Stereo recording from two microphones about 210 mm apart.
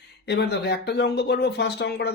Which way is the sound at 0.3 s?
55° left (ahead or behind).